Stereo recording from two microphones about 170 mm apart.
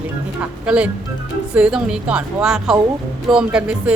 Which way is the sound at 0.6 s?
5° right (ahead or behind).